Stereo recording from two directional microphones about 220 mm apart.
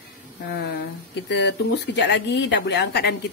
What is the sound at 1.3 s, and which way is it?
Speech, 50° left (ahead or behind).